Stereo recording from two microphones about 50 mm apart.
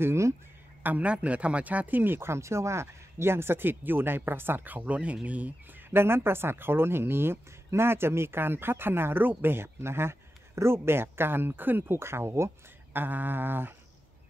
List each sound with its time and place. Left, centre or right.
0.0 s a sound: right
0.8 s speech: right
12.0 s speech: right
12.9 s speech: right